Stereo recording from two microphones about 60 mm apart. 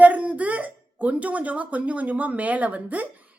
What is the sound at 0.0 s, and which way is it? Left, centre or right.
A woman's voice, right.